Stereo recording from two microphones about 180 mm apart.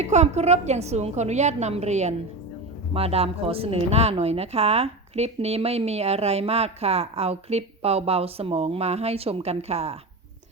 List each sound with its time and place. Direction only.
0.0 s speech: 40° right (ahead or behind)